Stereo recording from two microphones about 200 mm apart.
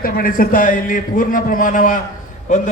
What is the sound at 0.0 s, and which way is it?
A man's voice, 45° left (ahead or behind).